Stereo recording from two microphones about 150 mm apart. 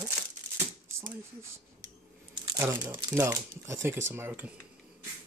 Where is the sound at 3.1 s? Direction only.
20° right (ahead or behind).